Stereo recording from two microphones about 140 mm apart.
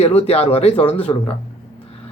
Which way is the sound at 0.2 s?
45° left (ahead or behind).